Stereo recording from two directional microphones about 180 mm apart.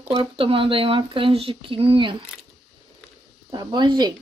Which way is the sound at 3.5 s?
25° right (ahead or behind).